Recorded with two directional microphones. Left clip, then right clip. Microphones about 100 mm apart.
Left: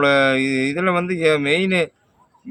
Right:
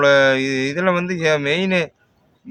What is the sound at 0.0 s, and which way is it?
Speech, 20° right (ahead or behind).